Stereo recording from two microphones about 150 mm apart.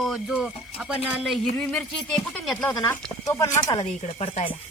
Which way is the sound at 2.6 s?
25° left (ahead or behind).